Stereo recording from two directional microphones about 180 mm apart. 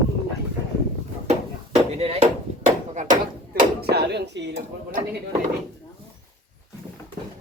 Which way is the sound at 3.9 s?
65° right (ahead or behind).